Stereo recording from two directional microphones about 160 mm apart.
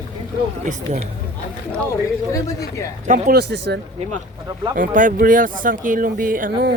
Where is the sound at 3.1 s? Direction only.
80° right.